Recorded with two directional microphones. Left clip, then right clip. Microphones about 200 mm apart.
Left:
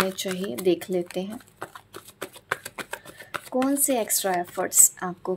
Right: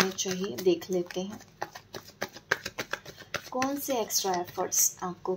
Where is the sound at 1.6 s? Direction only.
20° left (ahead or behind).